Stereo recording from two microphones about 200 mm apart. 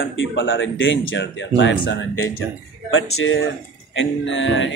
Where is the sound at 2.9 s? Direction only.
90° left; by 4.7 s 70° left (ahead or behind).